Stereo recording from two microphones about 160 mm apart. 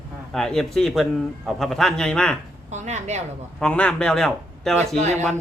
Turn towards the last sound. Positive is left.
turn(degrees=-45)  # may be behind; listen again after turning